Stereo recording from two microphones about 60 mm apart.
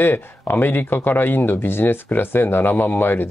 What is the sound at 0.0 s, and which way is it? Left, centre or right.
Speech, left.